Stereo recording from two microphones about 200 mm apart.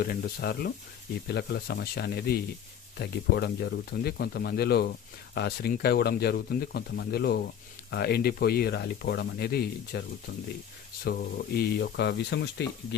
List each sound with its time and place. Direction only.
0.0 s speech: 50° left (ahead or behind)
11.0 s speech: 50° left (ahead or behind)